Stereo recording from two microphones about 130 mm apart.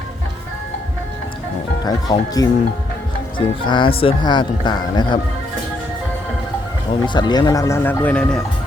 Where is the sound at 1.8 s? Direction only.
30° left (ahead or behind).